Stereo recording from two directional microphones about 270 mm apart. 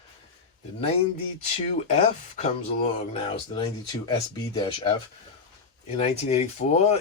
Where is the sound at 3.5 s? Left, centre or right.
Centre.